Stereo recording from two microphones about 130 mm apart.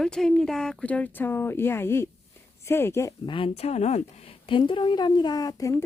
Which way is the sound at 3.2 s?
40° left (ahead or behind).